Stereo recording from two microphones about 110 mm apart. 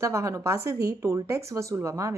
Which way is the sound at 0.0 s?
30° right (ahead or behind).